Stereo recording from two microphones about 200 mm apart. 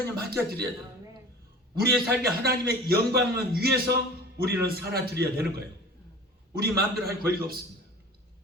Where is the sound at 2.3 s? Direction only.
50° right (ahead or behind).